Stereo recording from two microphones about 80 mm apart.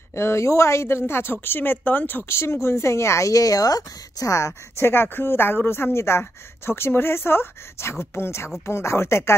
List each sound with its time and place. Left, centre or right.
0.1 s a woman's voice: left